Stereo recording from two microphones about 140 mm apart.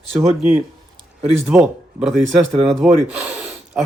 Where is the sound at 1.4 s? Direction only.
10° right (ahead or behind).